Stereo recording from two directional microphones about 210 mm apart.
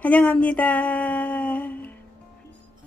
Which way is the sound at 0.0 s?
5° left (ahead or behind).